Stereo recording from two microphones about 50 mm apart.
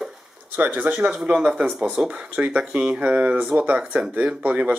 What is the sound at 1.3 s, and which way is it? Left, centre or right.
Speech, centre.